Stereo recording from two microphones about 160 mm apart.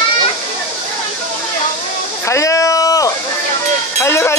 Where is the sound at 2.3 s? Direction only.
20° left (ahead or behind).